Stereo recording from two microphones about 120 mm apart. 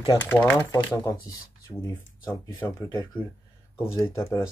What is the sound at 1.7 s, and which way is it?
Speech, 15° left (ahead or behind).